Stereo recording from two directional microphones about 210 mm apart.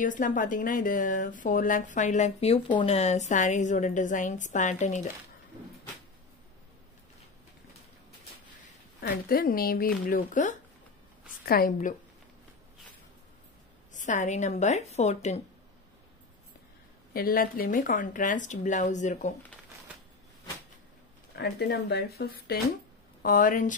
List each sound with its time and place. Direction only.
0.0 s a woman's voice: 40° left (ahead or behind)
9.0 s speech: 45° left (ahead or behind)
13.9 s a woman's voice: 35° left (ahead or behind)
17.1 s a woman's voice: 45° left (ahead or behind)
21.4 s speech: 50° left (ahead or behind)
23.2 s a woman's voice: 40° left (ahead or behind)